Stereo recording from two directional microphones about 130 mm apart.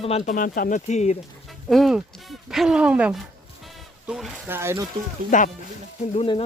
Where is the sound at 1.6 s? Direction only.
Centre (ahead or behind).